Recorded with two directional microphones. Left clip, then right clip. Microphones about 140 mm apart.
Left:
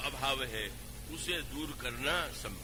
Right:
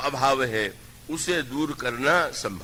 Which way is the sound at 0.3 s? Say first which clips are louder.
Right 13 dB; 25° left (ahead or behind).